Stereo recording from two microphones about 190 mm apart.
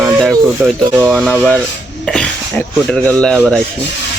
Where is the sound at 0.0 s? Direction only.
Centre (ahead or behind).